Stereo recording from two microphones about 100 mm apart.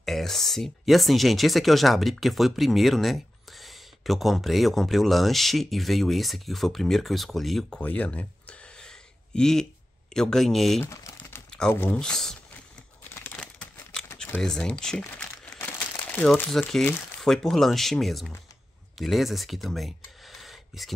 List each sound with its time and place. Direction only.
0.0 s speech: centre (ahead or behind)
7.8 s a sound: 15° left (ahead or behind)
10.1 s speech: 5° left (ahead or behind)
10.8 s typing: 25° left (ahead or behind)
11.7 s speech: 25° left (ahead or behind)
12.0 s speech: 5° left (ahead or behind)
13.2 s a sound: 10° left (ahead or behind)
14.1 s crumpling: 10° left (ahead or behind)
16.4 s speech: 5° left (ahead or behind)